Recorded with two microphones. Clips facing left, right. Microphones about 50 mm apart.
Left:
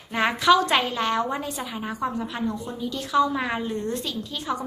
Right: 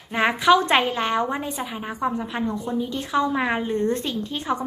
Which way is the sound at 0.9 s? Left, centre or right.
Centre.